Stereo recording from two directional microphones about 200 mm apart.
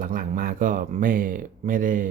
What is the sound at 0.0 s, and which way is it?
Speech, 45° right (ahead or behind).